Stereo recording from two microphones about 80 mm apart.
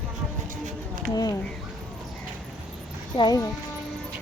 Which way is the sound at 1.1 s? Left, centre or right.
Left.